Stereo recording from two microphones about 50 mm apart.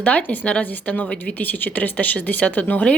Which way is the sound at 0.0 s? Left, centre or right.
Left.